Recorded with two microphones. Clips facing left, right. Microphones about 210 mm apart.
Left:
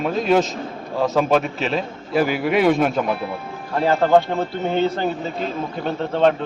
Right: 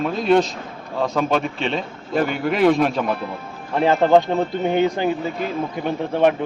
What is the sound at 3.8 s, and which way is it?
Speech, 20° right (ahead or behind).